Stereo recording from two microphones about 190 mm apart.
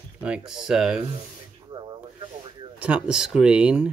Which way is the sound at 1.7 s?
25° right (ahead or behind).